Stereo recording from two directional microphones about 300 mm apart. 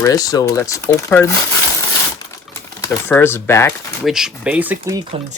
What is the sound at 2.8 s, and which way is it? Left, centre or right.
Speech, centre.